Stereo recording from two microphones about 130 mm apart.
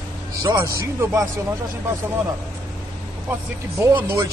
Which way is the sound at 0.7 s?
25° right (ahead or behind).